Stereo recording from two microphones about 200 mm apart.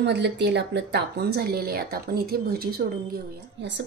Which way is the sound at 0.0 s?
60° right (ahead or behind).